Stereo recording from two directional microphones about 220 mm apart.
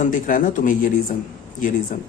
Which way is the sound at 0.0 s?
35° left (ahead or behind).